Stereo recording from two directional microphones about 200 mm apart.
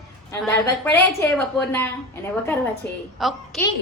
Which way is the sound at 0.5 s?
15° left (ahead or behind).